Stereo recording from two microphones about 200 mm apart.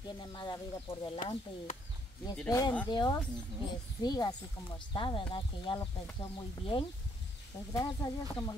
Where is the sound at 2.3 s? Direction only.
5° left (ahead or behind).